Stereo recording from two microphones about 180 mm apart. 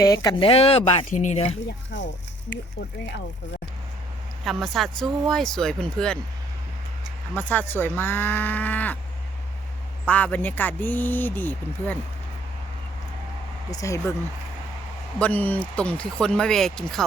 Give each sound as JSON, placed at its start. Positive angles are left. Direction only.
{"t": 0.0, "sound": "speech", "side_deg": 20}
{"t": 4.4, "sound": "speech", "side_deg": 0}
{"t": 7.3, "sound": "speech", "side_deg": 10}
{"t": 10.1, "sound": "speech", "side_deg": 10}
{"t": 13.7, "sound": "speech", "side_deg": 20}
{"t": 15.2, "sound": "speech", "side_deg": 10}